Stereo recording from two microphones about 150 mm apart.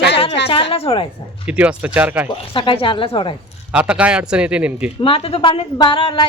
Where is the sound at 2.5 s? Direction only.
35° left (ahead or behind).